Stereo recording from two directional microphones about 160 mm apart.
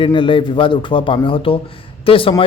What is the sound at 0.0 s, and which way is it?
Speech, 30° left (ahead or behind).